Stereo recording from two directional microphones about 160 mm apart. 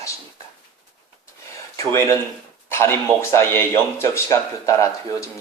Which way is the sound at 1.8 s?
20° left (ahead or behind).